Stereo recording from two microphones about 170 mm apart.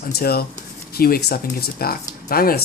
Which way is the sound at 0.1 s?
65° left (ahead or behind).